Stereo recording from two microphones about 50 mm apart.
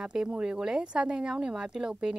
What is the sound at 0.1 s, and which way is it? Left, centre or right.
A woman's voice, centre.